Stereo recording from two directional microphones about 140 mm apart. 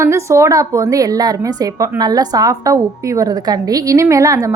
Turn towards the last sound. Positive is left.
turn(degrees=-25)  # may be behind; listen again after turning